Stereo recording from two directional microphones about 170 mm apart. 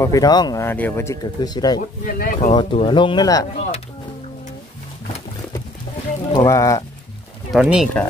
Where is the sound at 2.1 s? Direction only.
55° left (ahead or behind).